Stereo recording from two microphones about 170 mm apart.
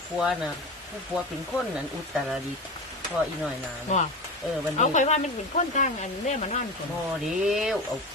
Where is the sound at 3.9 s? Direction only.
45° left (ahead or behind).